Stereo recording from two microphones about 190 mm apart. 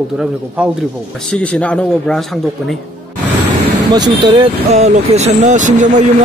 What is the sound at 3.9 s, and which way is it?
Speech, 25° right (ahead or behind).